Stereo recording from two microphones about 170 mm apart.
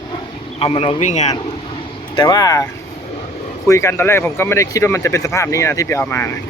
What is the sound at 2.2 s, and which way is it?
Speech, 25° left (ahead or behind).